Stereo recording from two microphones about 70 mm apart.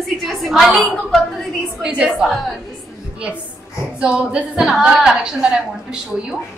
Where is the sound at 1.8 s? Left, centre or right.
Centre.